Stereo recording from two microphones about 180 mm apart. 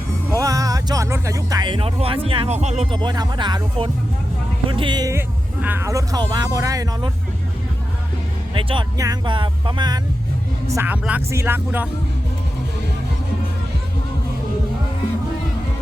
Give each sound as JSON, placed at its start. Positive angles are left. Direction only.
{"t": 0.3, "sound": "speech", "side_deg": -20}
{"t": 8.5, "sound": "speech", "side_deg": -25}
{"t": 10.7, "sound": "speech", "side_deg": -10}